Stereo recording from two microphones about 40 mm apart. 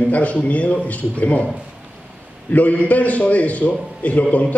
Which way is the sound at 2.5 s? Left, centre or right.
Left.